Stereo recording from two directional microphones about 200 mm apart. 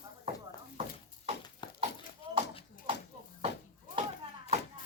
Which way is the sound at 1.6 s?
20° left (ahead or behind).